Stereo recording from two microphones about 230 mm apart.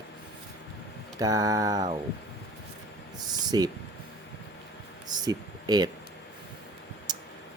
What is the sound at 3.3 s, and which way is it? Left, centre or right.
Speech, centre.